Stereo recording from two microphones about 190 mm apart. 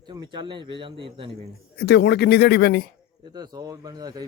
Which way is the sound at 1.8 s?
60° left (ahead or behind).